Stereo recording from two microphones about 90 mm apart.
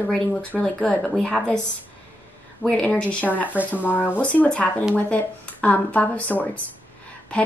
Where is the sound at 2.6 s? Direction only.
10° left (ahead or behind).